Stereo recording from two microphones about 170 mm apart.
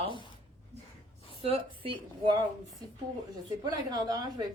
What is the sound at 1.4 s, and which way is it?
A woman's voice, 35° right (ahead or behind).